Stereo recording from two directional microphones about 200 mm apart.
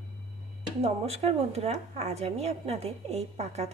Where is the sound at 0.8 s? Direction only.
30° right (ahead or behind).